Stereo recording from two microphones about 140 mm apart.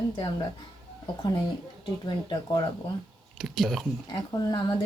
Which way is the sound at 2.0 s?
35° left (ahead or behind).